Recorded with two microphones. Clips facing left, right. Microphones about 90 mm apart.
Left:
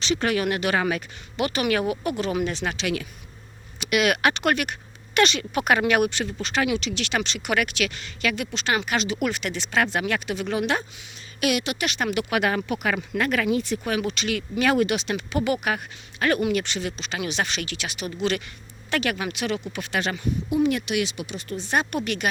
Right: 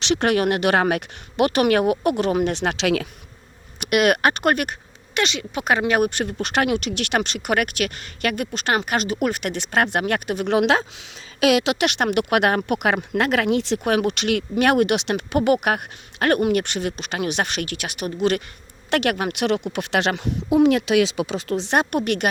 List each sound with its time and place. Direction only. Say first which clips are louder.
0.0 s speech: right 4 dB; 65° right (ahead or behind); by 3.1 s 90° right
3.8 s speech: right 4 dB; 50° right (ahead or behind)
5.1 s speech: left 2 dB; 20° right (ahead or behind)
6.0 s speech: right 3 dB; 50° right (ahead or behind)
10.5 s speech: right 8 dB; 85° right
12.0 s speech: right 4 dB; 60° right (ahead or behind); by 13.7 s 80° right
13.8 s speech: right 6 dB; 65° right (ahead or behind); by 18.4 s 50° right (ahead or behind)
18.9 s speech: right 5 dB; 65° right (ahead or behind)